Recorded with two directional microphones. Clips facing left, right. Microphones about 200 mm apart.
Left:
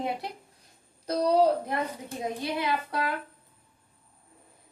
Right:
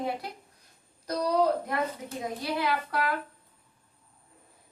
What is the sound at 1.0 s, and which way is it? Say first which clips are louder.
A woman's voice: left 3 dB; 30° left (ahead or behind).